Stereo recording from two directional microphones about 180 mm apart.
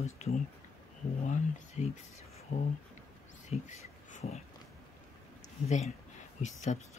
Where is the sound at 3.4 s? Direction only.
40° left (ahead or behind).